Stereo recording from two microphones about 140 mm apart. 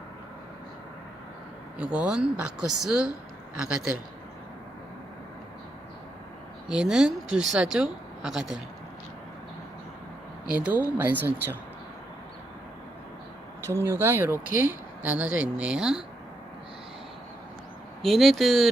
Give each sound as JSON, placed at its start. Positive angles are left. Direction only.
{"t": 1.8, "sound": "speech", "side_deg": -10}
{"t": 6.7, "sound": "speech", "side_deg": -5}
{"t": 10.4, "sound": "speech", "side_deg": -10}
{"t": 13.7, "sound": "speech", "side_deg": -20}
{"t": 18.0, "sound": "speech", "side_deg": 0}